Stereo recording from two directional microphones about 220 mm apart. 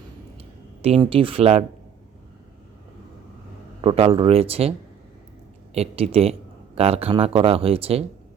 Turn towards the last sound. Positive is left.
turn(degrees=-25)  # may be behind; listen again after turning